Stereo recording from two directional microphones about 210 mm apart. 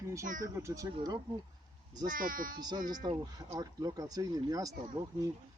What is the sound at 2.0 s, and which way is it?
Speech, 40° right (ahead or behind).